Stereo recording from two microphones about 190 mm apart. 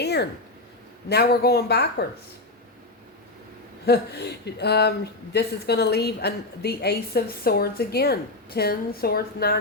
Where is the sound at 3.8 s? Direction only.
60° left (ahead or behind).